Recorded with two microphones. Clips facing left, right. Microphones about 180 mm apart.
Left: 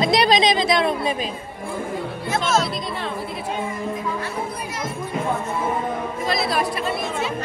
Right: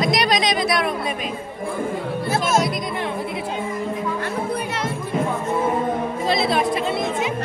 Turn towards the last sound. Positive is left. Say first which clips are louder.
# right 2 dB
turn(degrees=-20)  # may be behind; listen again after turning